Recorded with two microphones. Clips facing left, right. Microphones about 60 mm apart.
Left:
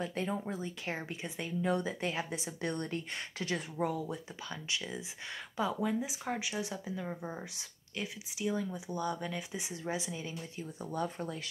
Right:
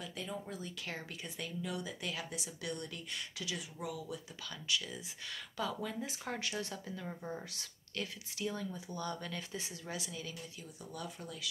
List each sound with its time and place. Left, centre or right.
0.0 s speech: left
0.5 s speech: left
1.6 s speech: left